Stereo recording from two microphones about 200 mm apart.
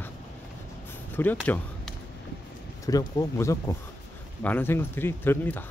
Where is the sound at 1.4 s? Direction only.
10° left (ahead or behind).